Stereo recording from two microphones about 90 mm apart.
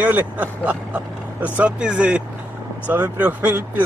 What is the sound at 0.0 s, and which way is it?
Speech, 15° right (ahead or behind).